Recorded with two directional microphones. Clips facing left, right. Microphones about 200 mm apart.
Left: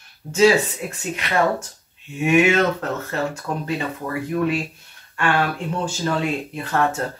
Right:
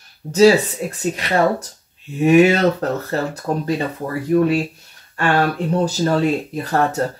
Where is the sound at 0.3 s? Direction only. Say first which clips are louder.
Right 4 dB; 35° right (ahead or behind).